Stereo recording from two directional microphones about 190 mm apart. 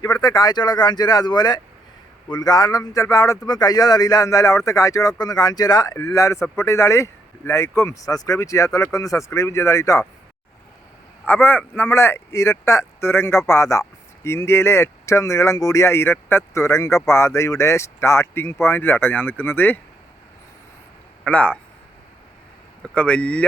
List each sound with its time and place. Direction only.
0.0 s speech: 20° left (ahead or behind)
11.3 s speech: 10° left (ahead or behind)
21.2 s speech: 5° left (ahead or behind)
22.8 s speech: 5° left (ahead or behind)